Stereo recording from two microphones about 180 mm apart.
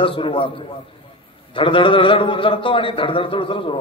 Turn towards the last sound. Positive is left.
turn(degrees=30)  # may be behind; listen again after turning